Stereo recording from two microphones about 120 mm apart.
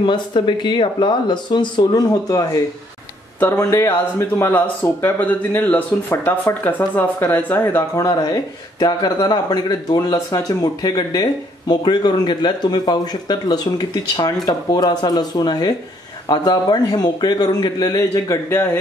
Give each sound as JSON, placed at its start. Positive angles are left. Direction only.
{"t": 0.0, "sound": "speech", "side_deg": 45}
{"t": 8.0, "sound": "speech", "side_deg": 35}